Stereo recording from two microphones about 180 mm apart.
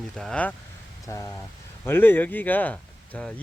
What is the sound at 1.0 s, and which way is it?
Speech, 20° left (ahead or behind).